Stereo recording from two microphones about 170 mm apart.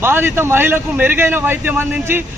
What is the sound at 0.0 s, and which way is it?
A man's voice, 15° right (ahead or behind).